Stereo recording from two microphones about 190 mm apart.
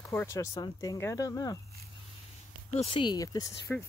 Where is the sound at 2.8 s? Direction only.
25° left (ahead or behind).